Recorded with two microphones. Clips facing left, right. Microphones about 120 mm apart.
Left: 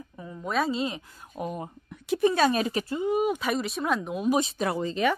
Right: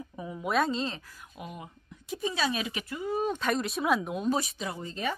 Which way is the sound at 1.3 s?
40° left (ahead or behind).